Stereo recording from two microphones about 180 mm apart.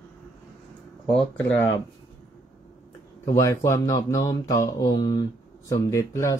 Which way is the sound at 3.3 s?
15° left (ahead or behind).